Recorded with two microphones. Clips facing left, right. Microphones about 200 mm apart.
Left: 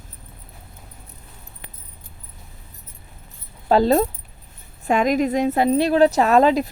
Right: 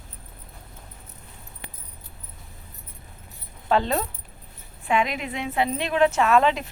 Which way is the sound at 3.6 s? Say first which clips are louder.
Left 7 dB; 35° left (ahead or behind).